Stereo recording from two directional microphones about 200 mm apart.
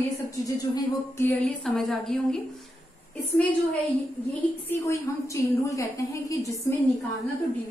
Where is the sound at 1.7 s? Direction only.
Centre (ahead or behind).